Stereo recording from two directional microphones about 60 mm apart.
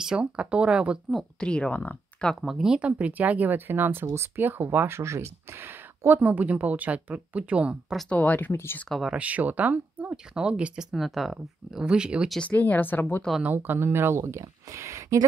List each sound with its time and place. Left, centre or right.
0.0 s speech: centre
1.4 s speech: centre
2.4 s speech: centre
2.8 s speech: right
4.0 s speech: right
4.4 s speech: right
8.1 s speech: left
9.1 s speech: right
10.1 s speech: centre
10.9 s speech: centre
11.8 s speech: centre
12.4 s speech: left
13.6 s speech: right